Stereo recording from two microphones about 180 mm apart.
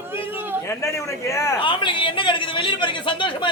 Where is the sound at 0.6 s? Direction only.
15° left (ahead or behind).